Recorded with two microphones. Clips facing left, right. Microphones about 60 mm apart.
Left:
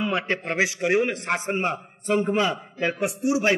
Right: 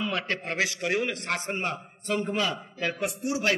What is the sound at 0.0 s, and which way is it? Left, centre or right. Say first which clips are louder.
A man's voice: left 4 dB; left.